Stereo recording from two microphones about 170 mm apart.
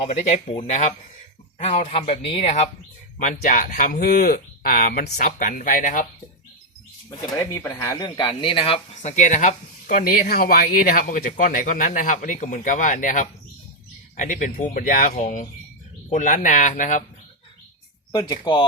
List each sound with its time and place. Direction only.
0.0 s speech: 40° left (ahead or behind)
7.3 s speech: 20° left (ahead or behind); by 17.0 s 45° left (ahead or behind)
18.1 s speech: 25° left (ahead or behind)